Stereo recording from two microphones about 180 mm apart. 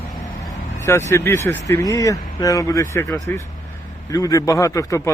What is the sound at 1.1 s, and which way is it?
A man's voice, 15° left (ahead or behind).